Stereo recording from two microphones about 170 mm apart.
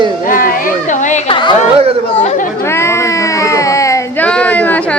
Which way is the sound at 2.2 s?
45° left (ahead or behind).